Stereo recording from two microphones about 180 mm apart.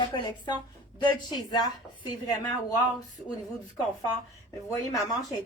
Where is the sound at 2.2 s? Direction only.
20° left (ahead or behind).